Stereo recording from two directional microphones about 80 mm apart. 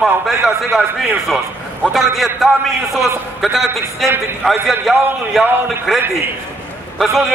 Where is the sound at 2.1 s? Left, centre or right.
Centre.